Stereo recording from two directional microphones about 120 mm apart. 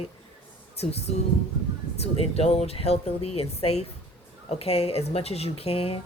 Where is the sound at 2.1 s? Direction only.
55° left (ahead or behind).